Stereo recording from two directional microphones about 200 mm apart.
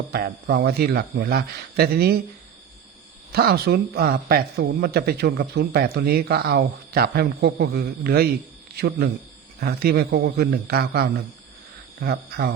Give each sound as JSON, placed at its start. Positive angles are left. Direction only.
{"t": 0.1, "sound": "speech", "side_deg": -50}
{"t": 3.3, "sound": "speech", "side_deg": -50}